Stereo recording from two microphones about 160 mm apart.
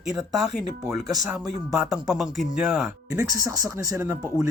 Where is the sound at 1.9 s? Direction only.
Centre (ahead or behind).